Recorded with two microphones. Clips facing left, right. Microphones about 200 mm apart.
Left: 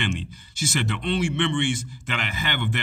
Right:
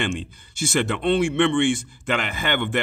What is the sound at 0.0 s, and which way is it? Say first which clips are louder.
Speech: right 3 dB; 50° right (ahead or behind).